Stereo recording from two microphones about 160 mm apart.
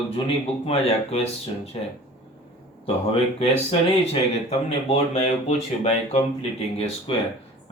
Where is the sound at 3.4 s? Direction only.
40° left (ahead or behind).